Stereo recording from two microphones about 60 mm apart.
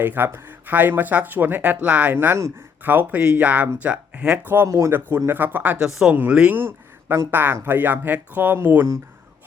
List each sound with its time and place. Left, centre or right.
0.0 s speech: right
2.1 s speech: right; by 4.4 s centre
4.6 s speech: right
5.1 s speech: right
5.8 s speech: centre
6.5 s speech: right